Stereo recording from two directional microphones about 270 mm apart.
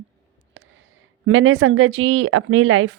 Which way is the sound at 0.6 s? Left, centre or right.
Right.